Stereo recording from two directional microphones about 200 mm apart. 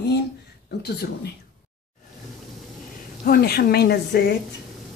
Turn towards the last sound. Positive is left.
turn(degrees=55)  # may be behind; listen again after turning